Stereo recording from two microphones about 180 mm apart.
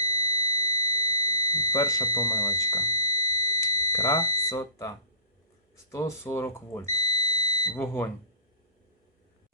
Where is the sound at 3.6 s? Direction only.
15° left (ahead or behind).